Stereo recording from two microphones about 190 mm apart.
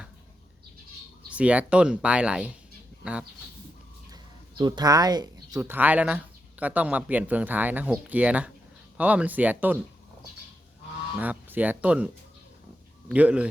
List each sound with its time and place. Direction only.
1.3 s speech: 5° right (ahead or behind)
4.1 s speech: 25° right (ahead or behind)
11.2 s speech: 10° right (ahead or behind)
13.1 s speech: 5° right (ahead or behind)